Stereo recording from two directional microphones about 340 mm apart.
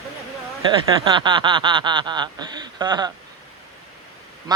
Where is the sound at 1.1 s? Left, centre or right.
Centre.